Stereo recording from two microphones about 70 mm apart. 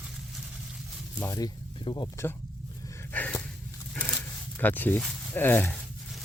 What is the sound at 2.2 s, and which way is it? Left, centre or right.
Speech, left.